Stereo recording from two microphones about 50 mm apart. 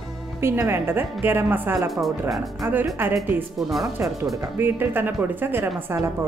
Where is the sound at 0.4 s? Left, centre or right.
Right.